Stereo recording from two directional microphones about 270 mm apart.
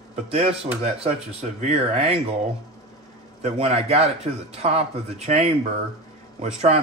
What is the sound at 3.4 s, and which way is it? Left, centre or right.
Speech, right.